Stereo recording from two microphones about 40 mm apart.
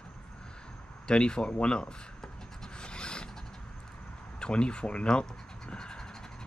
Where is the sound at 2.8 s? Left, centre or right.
Left.